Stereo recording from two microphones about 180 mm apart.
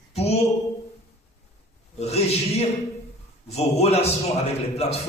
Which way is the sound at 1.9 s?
35° left (ahead or behind).